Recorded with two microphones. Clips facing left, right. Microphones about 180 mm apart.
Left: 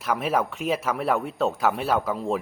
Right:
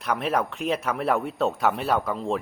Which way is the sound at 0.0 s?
Centre (ahead or behind).